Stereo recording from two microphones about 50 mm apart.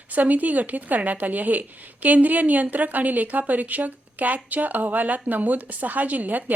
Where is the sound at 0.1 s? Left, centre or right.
Right.